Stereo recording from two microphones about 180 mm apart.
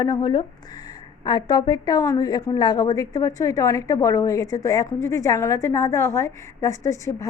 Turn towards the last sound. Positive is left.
turn(degrees=20)  # may be behind; listen again after turning